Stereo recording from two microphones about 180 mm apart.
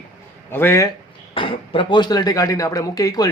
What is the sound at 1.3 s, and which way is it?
Speech, 30° left (ahead or behind).